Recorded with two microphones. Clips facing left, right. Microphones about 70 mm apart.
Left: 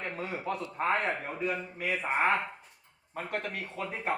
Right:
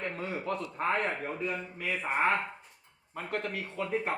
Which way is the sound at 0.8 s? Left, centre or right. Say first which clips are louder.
Left 2 dB; centre.